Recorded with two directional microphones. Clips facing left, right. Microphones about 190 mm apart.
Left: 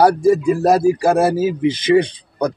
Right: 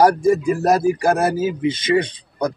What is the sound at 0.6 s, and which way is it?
Speech, 30° left (ahead or behind).